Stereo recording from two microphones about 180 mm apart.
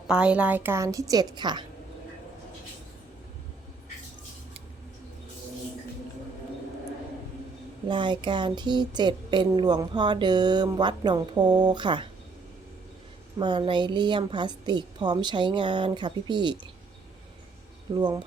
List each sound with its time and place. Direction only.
0.1 s a woman's voice: 5° right (ahead or behind); by 1.6 s 25° right (ahead or behind)
7.9 s a woman's voice: 25° right (ahead or behind)
13.4 s a woman's voice: 25° right (ahead or behind)
17.9 s a woman's voice: 20° right (ahead or behind)